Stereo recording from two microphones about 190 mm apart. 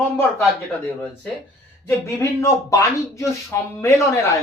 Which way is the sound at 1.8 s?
15° left (ahead or behind).